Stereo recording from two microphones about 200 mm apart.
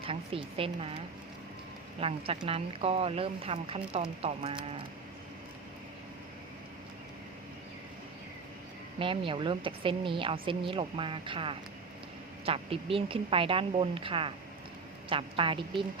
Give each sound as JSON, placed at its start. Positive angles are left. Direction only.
{"t": 0.0, "sound": "speech", "side_deg": -25}
{"t": 9.0, "sound": "speech", "side_deg": -25}